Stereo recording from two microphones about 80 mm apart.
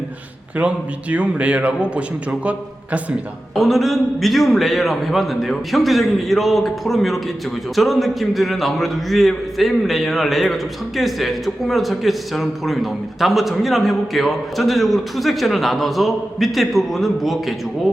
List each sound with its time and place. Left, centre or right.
0.6 s a man's voice: centre
3.5 s a man's voice: centre